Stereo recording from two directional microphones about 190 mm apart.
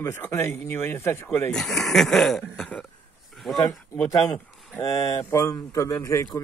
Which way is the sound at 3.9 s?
20° left (ahead or behind).